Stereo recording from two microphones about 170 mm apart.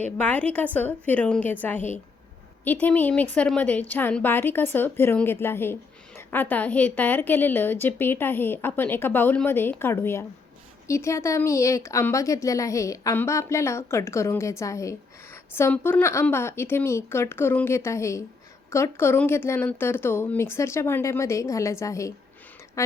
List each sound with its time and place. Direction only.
0.0 s a woman's voice: 10° left (ahead or behind)